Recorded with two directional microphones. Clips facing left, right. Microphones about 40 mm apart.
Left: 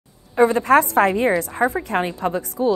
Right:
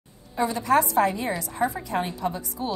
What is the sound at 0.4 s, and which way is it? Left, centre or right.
A woman's voice, left.